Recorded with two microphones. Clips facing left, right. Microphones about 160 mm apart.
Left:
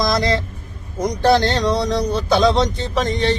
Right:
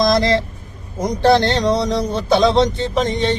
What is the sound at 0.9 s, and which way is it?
Speech, 25° right (ahead or behind).